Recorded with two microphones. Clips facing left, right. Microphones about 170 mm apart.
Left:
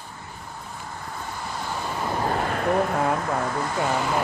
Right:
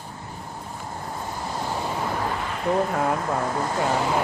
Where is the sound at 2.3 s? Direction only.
50° left (ahead or behind).